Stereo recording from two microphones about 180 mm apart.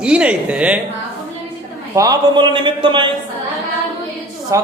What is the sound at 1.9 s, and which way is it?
Speech, 20° right (ahead or behind).